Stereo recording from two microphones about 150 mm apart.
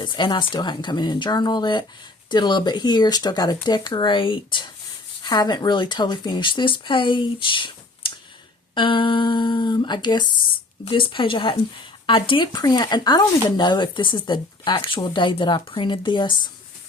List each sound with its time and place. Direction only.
0.0 s speech: 30° left (ahead or behind)